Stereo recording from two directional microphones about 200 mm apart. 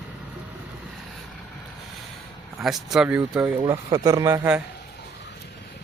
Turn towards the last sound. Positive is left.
turn(degrees=-10)  # may be behind; listen again after turning